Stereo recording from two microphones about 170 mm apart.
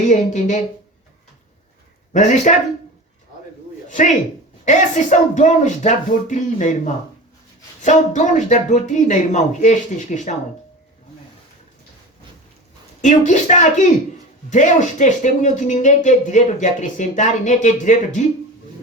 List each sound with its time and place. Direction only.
0.1 s speech: 45° left (ahead or behind)
2.1 s speech: 45° left (ahead or behind)
3.8 s speech: 45° left (ahead or behind)
13.0 s speech: 45° left (ahead or behind)